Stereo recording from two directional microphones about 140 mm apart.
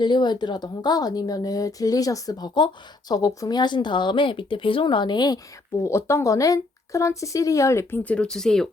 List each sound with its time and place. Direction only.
0.0 s a woman's voice: 30° left (ahead or behind)
5.8 s a woman's voice: 20° left (ahead or behind)
8.0 s speech: 10° left (ahead or behind)